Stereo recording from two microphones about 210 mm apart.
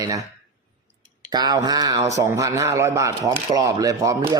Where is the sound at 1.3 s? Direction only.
20° right (ahead or behind).